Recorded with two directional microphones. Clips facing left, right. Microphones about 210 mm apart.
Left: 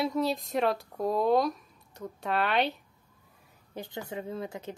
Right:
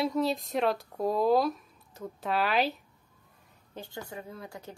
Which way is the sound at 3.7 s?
20° left (ahead or behind).